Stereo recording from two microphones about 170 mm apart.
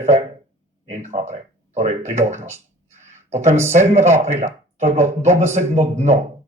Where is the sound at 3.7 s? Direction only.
45° right (ahead or behind).